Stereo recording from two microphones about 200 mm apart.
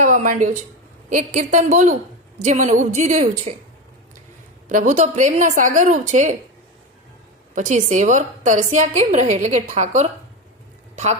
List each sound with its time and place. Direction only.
0.0 s a woman's voice: 40° right (ahead or behind)
4.7 s a woman's voice: 40° right (ahead or behind)
7.5 s a woman's voice: 40° right (ahead or behind)